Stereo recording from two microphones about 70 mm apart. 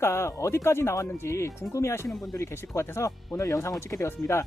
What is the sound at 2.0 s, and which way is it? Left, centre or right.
Speech, centre.